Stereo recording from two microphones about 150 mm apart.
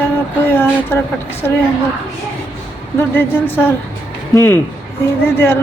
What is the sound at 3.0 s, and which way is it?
A woman's voice, 15° left (ahead or behind).